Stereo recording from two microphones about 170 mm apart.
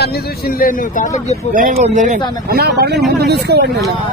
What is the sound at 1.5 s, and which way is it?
Speech, 50° right (ahead or behind).